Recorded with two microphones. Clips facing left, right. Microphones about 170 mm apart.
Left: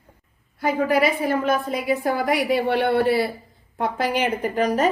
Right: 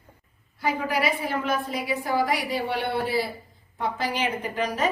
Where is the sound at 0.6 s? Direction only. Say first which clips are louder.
Left 6 dB; 50° left (ahead or behind).